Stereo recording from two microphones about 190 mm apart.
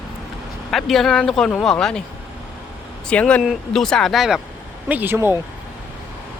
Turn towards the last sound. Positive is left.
turn(degrees=-10)  # may be behind; listen again after turning